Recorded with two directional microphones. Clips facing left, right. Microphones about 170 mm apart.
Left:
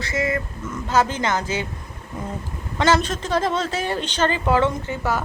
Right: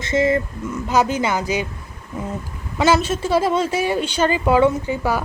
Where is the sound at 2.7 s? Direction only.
10° right (ahead or behind).